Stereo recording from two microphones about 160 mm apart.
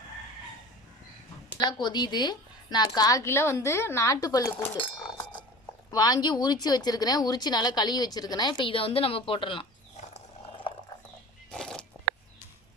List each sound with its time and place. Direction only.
1.5 s a woman's voice: 25° left (ahead or behind)
4.5 s cutlery: 10° left (ahead or behind)
5.9 s a woman's voice: 20° left (ahead or behind)
11.5 s a sound: 5° left (ahead or behind)